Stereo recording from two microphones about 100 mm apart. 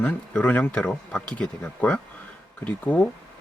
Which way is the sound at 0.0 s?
15° left (ahead or behind).